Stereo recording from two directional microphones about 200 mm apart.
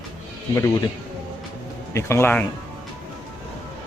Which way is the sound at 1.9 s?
15° left (ahead or behind).